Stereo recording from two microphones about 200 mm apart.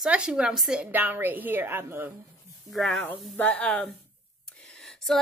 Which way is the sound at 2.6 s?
Centre (ahead or behind).